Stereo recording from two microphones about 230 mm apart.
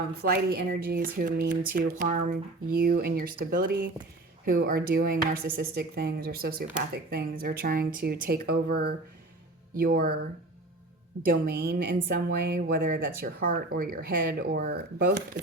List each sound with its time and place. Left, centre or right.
0.2 s speech: right
11.3 s a woman's voice: right